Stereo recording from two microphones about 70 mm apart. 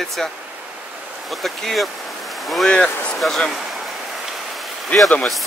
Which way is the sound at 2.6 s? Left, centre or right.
Centre.